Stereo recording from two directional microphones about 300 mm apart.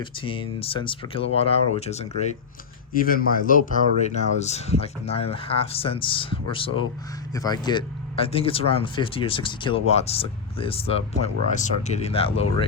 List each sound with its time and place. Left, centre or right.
0.0 s speech: centre